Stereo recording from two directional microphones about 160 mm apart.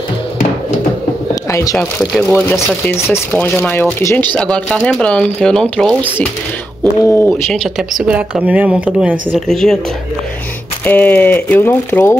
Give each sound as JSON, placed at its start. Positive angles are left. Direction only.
{"t": 1.3, "sound": "speech", "side_deg": 20}
{"t": 4.4, "sound": "speech", "side_deg": 5}
{"t": 6.8, "sound": "speech", "side_deg": 15}
{"t": 7.2, "sound": "speech", "side_deg": 0}
{"t": 9.3, "sound": "speech", "side_deg": 5}
{"t": 10.9, "sound": "speech", "side_deg": 10}